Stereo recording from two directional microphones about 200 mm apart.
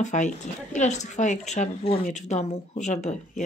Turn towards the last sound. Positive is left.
turn(degrees=35)  # may be behind; listen again after turning